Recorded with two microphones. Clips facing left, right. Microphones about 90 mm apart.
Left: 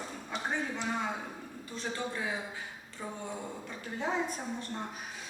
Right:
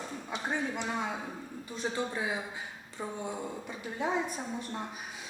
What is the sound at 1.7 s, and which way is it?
A woman's voice, 15° right (ahead or behind).